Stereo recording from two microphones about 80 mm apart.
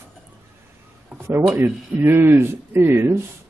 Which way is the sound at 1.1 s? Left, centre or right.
Centre.